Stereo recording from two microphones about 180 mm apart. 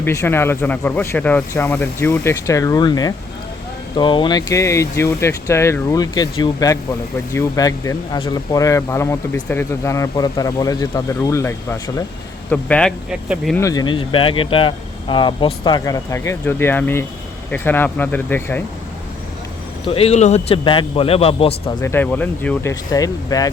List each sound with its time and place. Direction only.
0.0 s speech: 15° left (ahead or behind); by 13.6 s centre (ahead or behind)
13.6 s speech: 20° left (ahead or behind)
19.9 s speech: 35° left (ahead or behind)
21.8 s speech: 10° left (ahead or behind)